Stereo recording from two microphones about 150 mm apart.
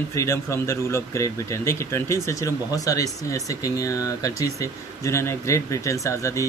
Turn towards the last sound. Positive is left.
turn(degrees=20)  # may be behind; listen again after turning